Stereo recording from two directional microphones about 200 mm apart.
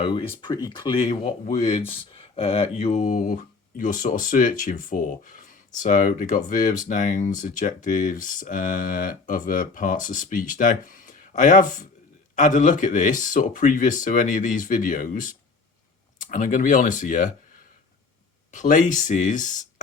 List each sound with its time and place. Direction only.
0.0 s speech: 25° left (ahead or behind)
1.2 s speech: 40° left (ahead or behind)
1.9 s speech: 30° left (ahead or behind)
18.5 s speech: 40° left (ahead or behind)